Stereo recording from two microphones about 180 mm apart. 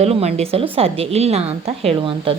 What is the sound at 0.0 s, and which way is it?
A woman's voice, 35° right (ahead or behind).